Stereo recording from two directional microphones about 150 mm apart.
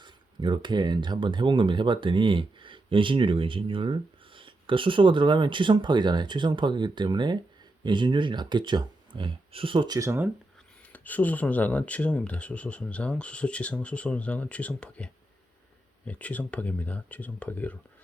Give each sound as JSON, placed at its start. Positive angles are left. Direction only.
{"t": 0.0, "sound": "speech", "side_deg": -30}
{"t": 10.9, "sound": "speech", "side_deg": 10}